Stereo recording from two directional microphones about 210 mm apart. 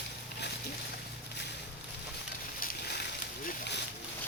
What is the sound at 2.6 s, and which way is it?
Boat, 45° left (ahead or behind).